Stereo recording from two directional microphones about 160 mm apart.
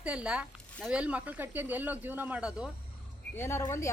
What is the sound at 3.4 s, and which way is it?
Speech, 15° left (ahead or behind).